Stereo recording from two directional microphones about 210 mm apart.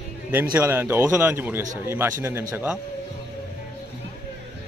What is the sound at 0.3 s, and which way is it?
Speech, 10° right (ahead or behind).